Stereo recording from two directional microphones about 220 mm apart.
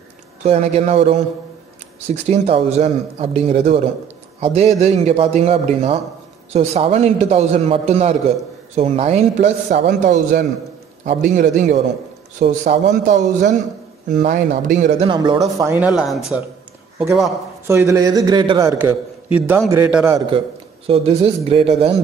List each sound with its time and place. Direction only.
0.4 s a man's voice: 25° right (ahead or behind)
2.2 s a man's voice: 30° right (ahead or behind)
9.7 s a man's voice: 45° right (ahead or behind)
10.0 s speech: 35° right (ahead or behind)
15.0 s a man's voice: 20° right (ahead or behind); by 16.2 s 5° right (ahead or behind)
17.6 s a man's voice: 15° right (ahead or behind)
20.2 s a man's voice: 25° right (ahead or behind)